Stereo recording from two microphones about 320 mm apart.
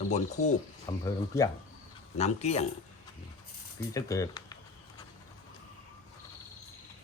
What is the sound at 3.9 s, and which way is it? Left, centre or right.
Speech, centre.